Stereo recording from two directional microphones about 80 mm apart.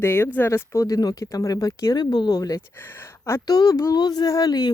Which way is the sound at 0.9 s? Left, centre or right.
Left.